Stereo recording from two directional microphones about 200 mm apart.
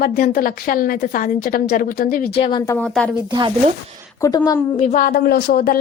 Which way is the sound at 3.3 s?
20° right (ahead or behind).